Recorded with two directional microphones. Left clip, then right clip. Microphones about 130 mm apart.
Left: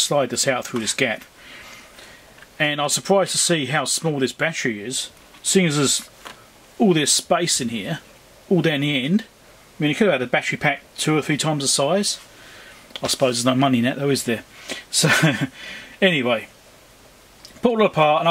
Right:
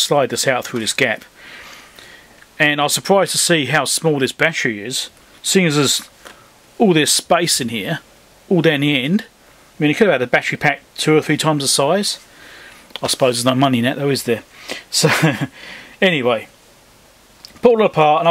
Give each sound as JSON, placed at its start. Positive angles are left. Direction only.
{"t": 0.0, "sound": "speech", "side_deg": -30}
{"t": 2.5, "sound": "speech", "side_deg": -30}
{"t": 17.6, "sound": "speech", "side_deg": -25}